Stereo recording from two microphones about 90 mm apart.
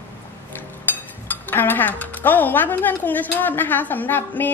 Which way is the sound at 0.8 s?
20° left (ahead or behind).